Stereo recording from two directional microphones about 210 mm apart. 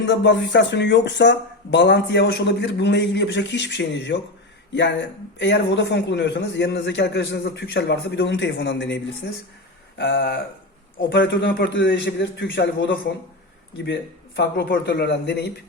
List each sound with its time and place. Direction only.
0.0 s a man's voice: 60° left (ahead or behind)
10.0 s a man's voice: 55° left (ahead or behind)
14.3 s a man's voice: 50° left (ahead or behind)